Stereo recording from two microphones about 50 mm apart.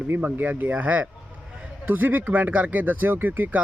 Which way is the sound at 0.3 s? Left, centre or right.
Right.